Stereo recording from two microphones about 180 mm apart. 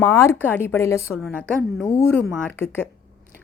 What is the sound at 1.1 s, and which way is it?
Speech, 5° left (ahead or behind).